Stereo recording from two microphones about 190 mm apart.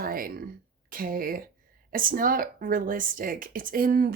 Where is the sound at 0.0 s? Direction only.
50° right (ahead or behind).